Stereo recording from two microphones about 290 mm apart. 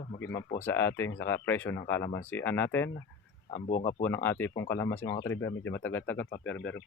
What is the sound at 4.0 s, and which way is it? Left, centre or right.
Speech, centre.